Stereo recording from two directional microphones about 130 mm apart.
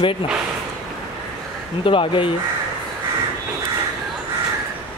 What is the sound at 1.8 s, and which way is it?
Speech, 40° left (ahead or behind).